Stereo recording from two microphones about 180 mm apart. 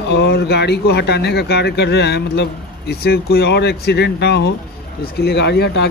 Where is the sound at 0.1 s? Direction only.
65° left (ahead or behind).